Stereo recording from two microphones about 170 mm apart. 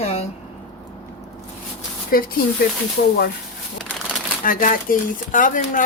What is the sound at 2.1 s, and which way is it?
Speech, 60° left (ahead or behind).